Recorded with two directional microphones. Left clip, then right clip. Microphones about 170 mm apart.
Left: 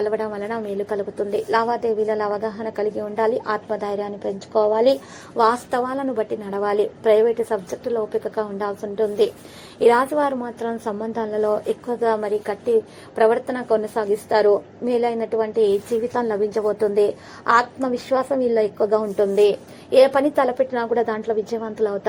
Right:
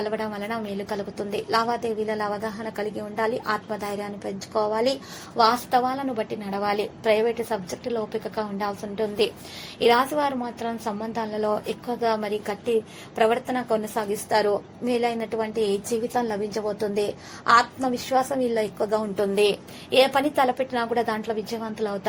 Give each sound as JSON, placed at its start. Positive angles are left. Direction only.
{"t": 0.0, "sound": "a woman's voice", "side_deg": -20}
{"t": 19.1, "sound": "a woman's voice", "side_deg": -40}
{"t": 19.9, "sound": "a woman's voice", "side_deg": -25}